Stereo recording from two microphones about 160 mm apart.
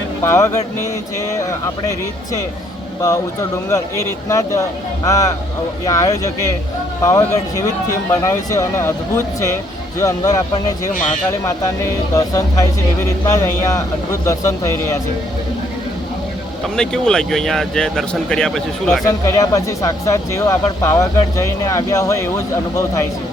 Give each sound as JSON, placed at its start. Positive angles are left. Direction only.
{"t": 0.2, "sound": "speech", "side_deg": 15}
{"t": 3.7, "sound": "speech", "side_deg": 20}
{"t": 16.7, "sound": "speech", "side_deg": 5}
{"t": 19.0, "sound": "speech", "side_deg": 20}